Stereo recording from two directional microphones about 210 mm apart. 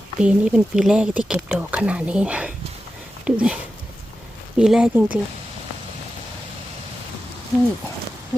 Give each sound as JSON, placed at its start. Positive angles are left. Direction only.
{"t": 0.2, "sound": "speech", "side_deg": -5}